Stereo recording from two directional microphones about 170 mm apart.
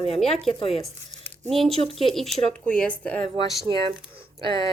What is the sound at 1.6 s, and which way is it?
Speech, 35° right (ahead or behind).